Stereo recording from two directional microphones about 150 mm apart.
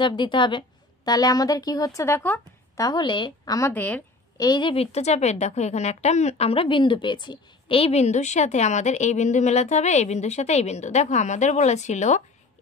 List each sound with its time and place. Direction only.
0.0 s a woman's voice: 30° left (ahead or behind); by 2.8 s 15° left (ahead or behind)
2.8 s a woman's voice: 30° left (ahead or behind)
3.7 s a woman's voice: 10° left (ahead or behind)
4.4 s a woman's voice: 30° left (ahead or behind); by 12.2 s 50° left (ahead or behind)